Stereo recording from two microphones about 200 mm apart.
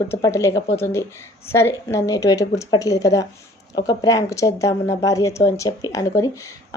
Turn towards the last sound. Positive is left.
turn(degrees=15)  # may be behind; listen again after turning